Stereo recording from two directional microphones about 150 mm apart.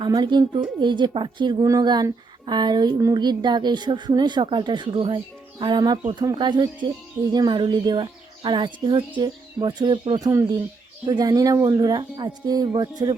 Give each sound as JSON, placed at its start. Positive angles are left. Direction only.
{"t": 0.0, "sound": "a woman's voice", "side_deg": -30}